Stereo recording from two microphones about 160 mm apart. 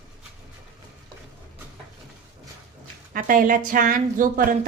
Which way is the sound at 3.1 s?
60° right (ahead or behind).